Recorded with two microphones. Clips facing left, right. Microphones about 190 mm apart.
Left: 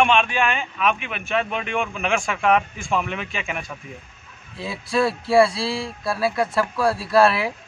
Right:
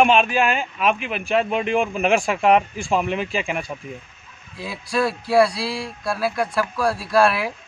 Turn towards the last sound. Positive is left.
turn(degrees=0)  # may be behind; listen again after turning